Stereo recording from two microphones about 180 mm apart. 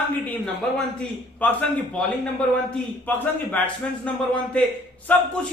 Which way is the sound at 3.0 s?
10° left (ahead or behind).